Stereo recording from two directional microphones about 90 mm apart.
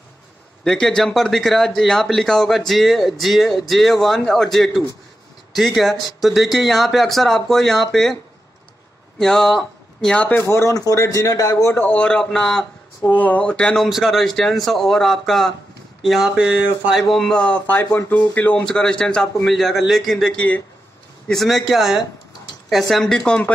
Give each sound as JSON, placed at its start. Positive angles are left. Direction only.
{"t": 0.7, "sound": "speech", "side_deg": 5}
{"t": 9.2, "sound": "speech", "side_deg": 5}
{"t": 10.2, "sound": "a man's voice", "side_deg": 25}
{"t": 11.8, "sound": "a man's voice", "side_deg": 15}
{"t": 13.1, "sound": "a man's voice", "side_deg": 15}
{"t": 13.8, "sound": "speech", "side_deg": 0}
{"t": 17.1, "sound": "a man's voice", "side_deg": 5}
{"t": 21.3, "sound": "speech", "side_deg": 0}